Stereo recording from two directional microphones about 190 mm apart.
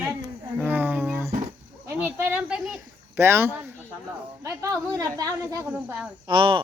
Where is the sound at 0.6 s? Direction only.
10° right (ahead or behind).